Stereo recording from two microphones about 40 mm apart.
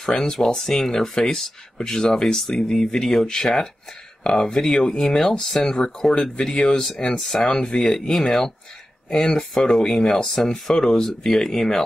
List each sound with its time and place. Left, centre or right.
0.0 s speech: centre